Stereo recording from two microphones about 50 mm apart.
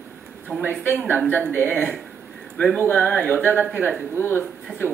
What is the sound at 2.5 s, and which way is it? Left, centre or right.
Speech, left.